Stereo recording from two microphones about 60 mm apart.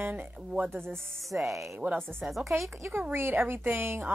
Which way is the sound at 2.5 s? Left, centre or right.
Right.